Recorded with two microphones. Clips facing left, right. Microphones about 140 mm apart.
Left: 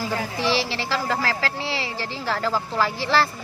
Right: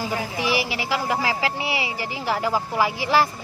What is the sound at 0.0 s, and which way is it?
Speech, 15° right (ahead or behind).